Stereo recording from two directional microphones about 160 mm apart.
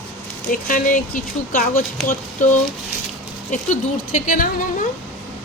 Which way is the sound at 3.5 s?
55° left (ahead or behind).